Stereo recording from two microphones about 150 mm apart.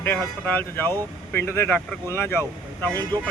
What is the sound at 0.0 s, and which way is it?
Speech, 15° left (ahead or behind).